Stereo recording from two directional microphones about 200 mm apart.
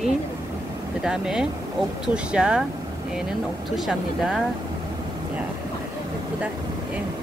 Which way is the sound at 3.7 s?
Centre (ahead or behind).